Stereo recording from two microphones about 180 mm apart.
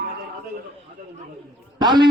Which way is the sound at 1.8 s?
25° right (ahead or behind).